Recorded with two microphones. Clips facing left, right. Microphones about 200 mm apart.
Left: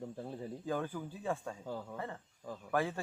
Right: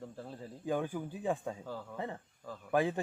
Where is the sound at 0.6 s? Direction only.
15° right (ahead or behind).